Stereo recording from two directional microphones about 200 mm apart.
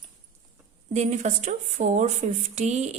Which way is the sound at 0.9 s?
35° right (ahead or behind).